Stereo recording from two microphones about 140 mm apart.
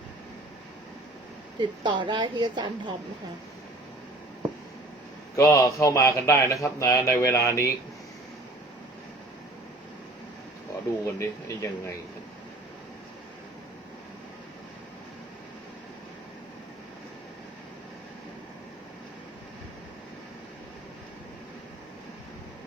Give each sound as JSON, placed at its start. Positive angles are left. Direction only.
{"t": 1.5, "sound": "a woman's voice", "side_deg": -35}
{"t": 5.4, "sound": "speech", "side_deg": 25}
{"t": 11.0, "sound": "speech", "side_deg": 20}